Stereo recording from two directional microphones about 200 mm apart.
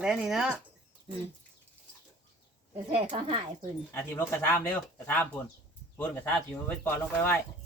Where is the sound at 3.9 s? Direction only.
10° left (ahead or behind).